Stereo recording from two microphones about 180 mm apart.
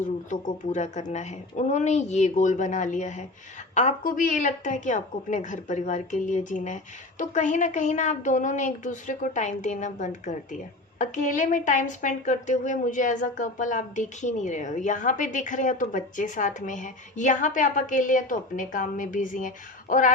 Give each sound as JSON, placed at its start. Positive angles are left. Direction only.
{"t": 0.3, "sound": "a woman's voice", "side_deg": 45}